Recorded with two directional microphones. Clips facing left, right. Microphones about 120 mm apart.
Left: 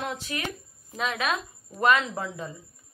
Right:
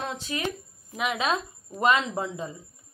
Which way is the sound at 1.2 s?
20° right (ahead or behind).